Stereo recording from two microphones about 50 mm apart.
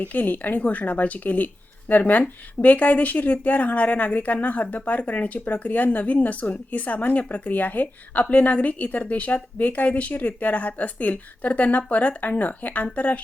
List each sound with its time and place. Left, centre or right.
0.0 s a woman's voice: left